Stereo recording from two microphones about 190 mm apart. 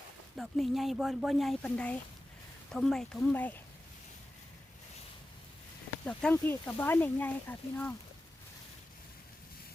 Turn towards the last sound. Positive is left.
turn(degrees=10)  # may be behind; listen again after turning